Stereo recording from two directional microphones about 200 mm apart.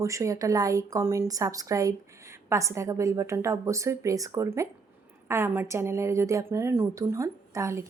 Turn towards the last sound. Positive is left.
turn(degrees=-15)  # may be behind; listen again after turning